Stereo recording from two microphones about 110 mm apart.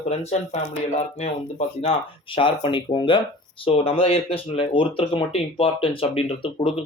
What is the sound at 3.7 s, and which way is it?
Speech, 60° left (ahead or behind).